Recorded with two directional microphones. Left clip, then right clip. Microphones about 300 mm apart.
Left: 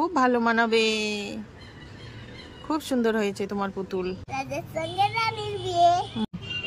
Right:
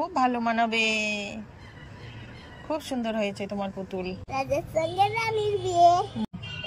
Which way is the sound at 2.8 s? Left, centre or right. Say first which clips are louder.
Left 6 dB; centre.